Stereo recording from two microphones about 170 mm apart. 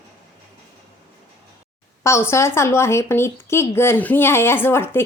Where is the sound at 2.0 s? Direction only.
15° left (ahead or behind).